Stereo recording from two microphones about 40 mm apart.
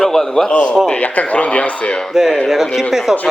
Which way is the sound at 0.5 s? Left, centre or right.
Left.